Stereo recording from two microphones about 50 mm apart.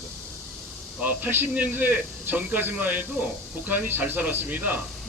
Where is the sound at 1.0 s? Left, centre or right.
Right.